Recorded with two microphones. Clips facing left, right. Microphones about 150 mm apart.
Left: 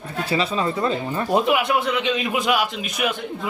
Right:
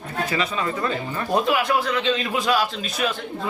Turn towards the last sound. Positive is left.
turn(degrees=20)  # may be behind; listen again after turning